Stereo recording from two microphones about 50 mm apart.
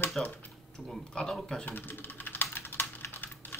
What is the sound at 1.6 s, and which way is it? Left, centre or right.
Typing, left.